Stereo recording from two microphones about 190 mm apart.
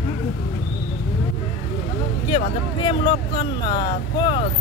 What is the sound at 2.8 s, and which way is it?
Speech, 25° left (ahead or behind).